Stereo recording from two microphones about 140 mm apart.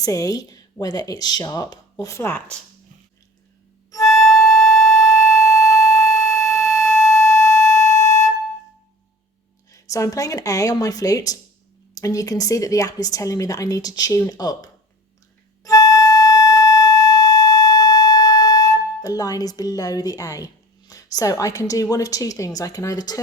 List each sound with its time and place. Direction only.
0.0 s a woman's voice: 25° left (ahead or behind)
3.9 s music: 25° left (ahead or behind)
4.4 s music: centre (ahead or behind)
4.9 s music: 25° left (ahead or behind)
9.7 s a woman's voice: 25° left (ahead or behind)
15.6 s music: 25° left (ahead or behind)